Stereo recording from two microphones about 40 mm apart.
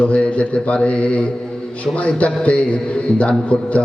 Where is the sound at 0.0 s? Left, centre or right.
Left.